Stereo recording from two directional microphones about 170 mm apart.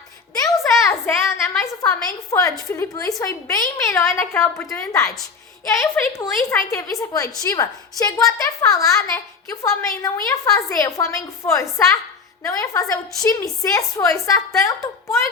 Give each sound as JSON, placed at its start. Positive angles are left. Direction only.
{"t": 0.9, "sound": "a woman's voice", "side_deg": 15}